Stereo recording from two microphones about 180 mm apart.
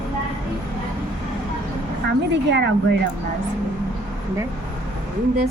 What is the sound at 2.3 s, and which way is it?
Speech, 75° right (ahead or behind).